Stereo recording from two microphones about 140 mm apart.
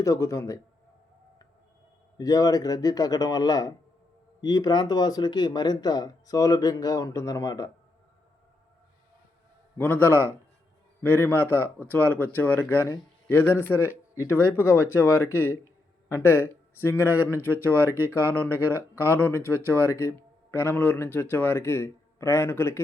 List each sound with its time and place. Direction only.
0.0 s speech: 20° left (ahead or behind)
2.1 s speech: 25° left (ahead or behind)
9.7 s speech: 15° left (ahead or behind)
17.8 s speech: 15° right (ahead or behind)
18.3 s speech: 10° left (ahead or behind)